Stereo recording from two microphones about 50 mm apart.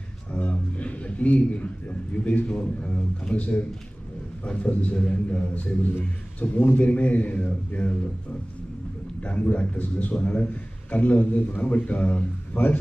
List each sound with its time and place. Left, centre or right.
0.3 s a sound: left
2.1 s a man's voice: left
9.2 s a man's voice: left